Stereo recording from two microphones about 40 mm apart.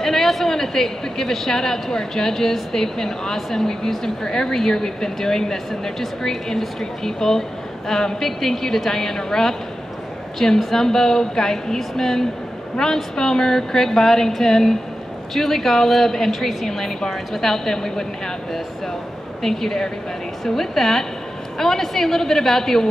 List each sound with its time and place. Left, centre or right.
0.0 s speech: centre
3.3 s speech: centre
10.6 s speech: centre